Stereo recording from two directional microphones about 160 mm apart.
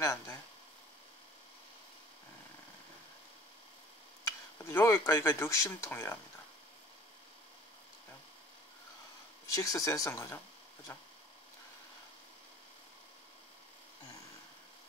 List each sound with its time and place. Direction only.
0.0 s speech: 20° left (ahead or behind)
4.2 s speech: 15° left (ahead or behind)
9.6 s speech: 20° left (ahead or behind)